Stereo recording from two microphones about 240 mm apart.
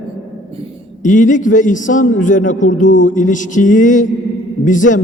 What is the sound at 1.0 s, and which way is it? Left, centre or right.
A man's voice, left.